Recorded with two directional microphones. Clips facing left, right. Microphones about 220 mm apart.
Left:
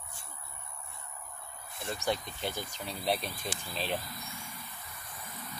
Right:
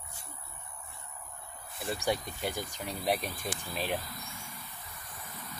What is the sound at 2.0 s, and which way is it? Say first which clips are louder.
Speech: right 1 dB; 10° right (ahead or behind).